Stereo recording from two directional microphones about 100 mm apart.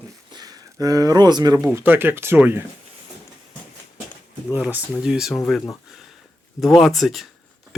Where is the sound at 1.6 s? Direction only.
20° right (ahead or behind).